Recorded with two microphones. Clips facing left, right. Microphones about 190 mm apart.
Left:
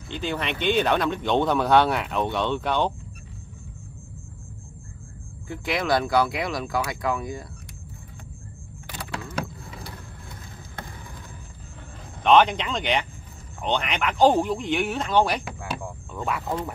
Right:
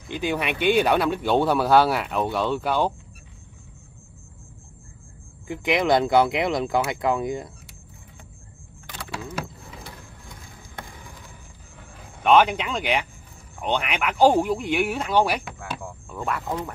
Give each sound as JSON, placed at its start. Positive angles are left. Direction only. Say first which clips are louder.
{"t": 0.1, "sound": "speech", "louder": "right 3 dB", "side_deg": -10}
{"t": 5.5, "sound": "speech", "louder": "right 4 dB", "side_deg": -20}
{"t": 9.3, "sound": "vehicle", "louder": "left 1 dB", "side_deg": -5}
{"t": 12.2, "sound": "speech", "louder": "even", "side_deg": -5}